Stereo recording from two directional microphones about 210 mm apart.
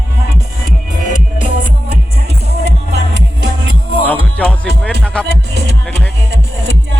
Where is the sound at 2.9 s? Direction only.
60° right (ahead or behind).